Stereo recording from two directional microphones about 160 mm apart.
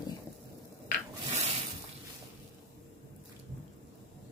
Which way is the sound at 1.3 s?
45° right (ahead or behind).